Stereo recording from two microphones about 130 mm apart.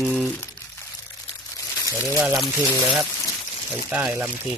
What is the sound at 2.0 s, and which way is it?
Speech, 15° right (ahead or behind).